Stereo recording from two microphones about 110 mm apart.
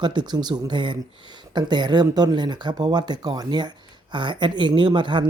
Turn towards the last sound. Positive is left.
turn(degrees=-45)  # may be behind; listen again after turning